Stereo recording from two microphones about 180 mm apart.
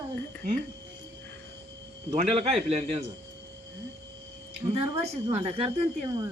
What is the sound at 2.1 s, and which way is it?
Speech, 35° right (ahead or behind).